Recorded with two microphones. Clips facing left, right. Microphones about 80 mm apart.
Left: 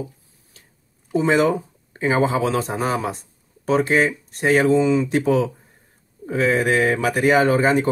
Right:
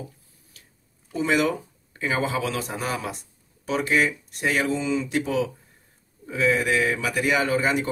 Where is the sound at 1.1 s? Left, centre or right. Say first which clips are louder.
Left 5 dB; left.